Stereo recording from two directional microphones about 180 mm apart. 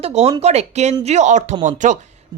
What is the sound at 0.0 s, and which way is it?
Speech, 35° right (ahead or behind).